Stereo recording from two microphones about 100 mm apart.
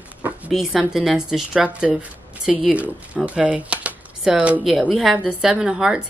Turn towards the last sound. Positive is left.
turn(degrees=-10)  # may be behind; listen again after turning